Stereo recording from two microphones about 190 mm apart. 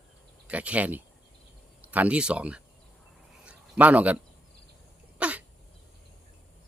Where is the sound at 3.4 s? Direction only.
5° right (ahead or behind).